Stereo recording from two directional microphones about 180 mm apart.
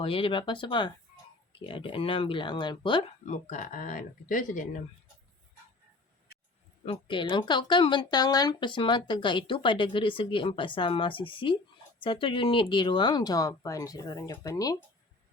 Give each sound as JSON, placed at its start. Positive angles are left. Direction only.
{"t": 0.0, "sound": "speech", "side_deg": 30}
{"t": 3.2, "sound": "speech", "side_deg": 45}
{"t": 6.8, "sound": "speech", "side_deg": 25}